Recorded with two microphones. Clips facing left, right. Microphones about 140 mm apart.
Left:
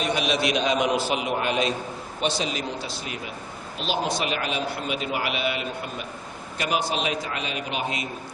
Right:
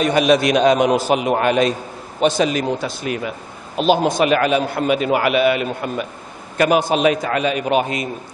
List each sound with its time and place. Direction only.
0.0 s a man's voice: 50° right (ahead or behind)